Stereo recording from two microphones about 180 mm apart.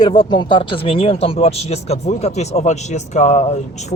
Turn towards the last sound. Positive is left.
turn(degrees=40)  # may be behind; listen again after turning